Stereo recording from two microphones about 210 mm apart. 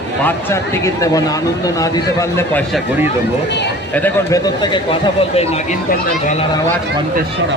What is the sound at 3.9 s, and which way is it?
Speech, 10° left (ahead or behind).